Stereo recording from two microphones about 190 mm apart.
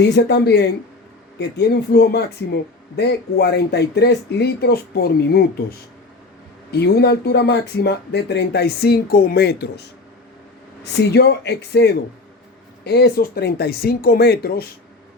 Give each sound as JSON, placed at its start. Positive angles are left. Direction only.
{"t": 0.0, "sound": "speech", "side_deg": 65}
{"t": 6.7, "sound": "speech", "side_deg": 60}
{"t": 10.8, "sound": "speech", "side_deg": 60}